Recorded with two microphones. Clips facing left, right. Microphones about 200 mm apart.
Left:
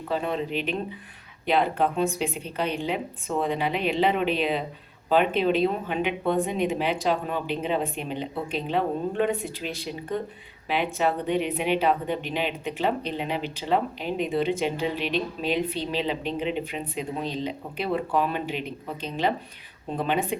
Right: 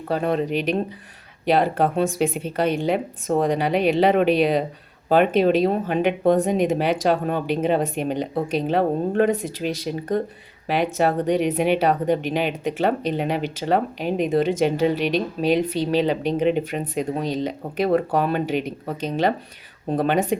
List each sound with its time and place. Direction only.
0.1 s speech: 50° right (ahead or behind)
19.9 s speech: 45° right (ahead or behind)